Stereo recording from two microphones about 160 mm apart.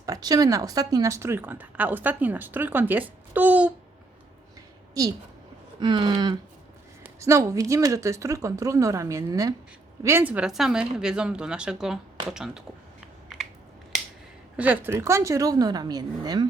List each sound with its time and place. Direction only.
0.0 s a woman's voice: 25° right (ahead or behind)
5.8 s speech: 30° right (ahead or behind); by 12.6 s 5° right (ahead or behind)
14.5 s speech: 10° right (ahead or behind); by 16.5 s 25° right (ahead or behind)